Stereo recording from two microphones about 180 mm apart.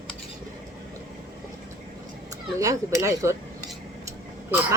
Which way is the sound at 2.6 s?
20° right (ahead or behind).